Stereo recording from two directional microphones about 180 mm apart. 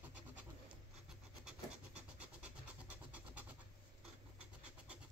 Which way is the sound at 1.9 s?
5° right (ahead or behind).